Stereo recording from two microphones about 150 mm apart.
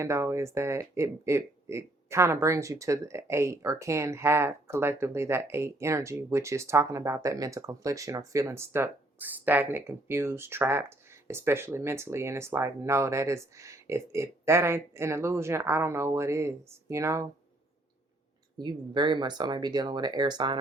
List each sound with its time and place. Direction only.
0.0 s speech: 20° right (ahead or behind)
18.5 s speech: 30° right (ahead or behind)